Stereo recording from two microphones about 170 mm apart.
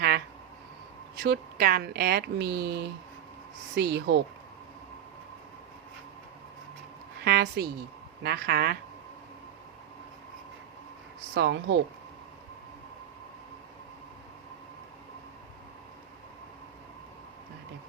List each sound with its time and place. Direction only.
1.2 s speech: 65° right (ahead or behind)
3.8 s speech: 85° right
7.3 s speech: 75° right (ahead or behind)
11.3 s speech: 90° right